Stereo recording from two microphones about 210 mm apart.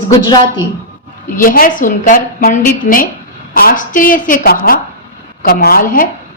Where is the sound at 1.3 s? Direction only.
40° left (ahead or behind).